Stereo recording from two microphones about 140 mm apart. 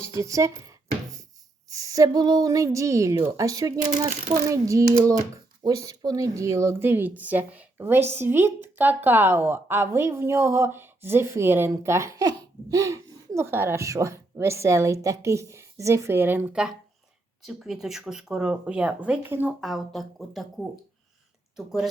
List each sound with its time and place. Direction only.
0.1 s a woman's voice: 25° right (ahead or behind)
19.6 s speech: centre (ahead or behind)